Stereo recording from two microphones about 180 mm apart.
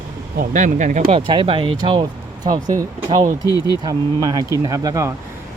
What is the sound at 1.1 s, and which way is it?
Speech, 30° right (ahead or behind).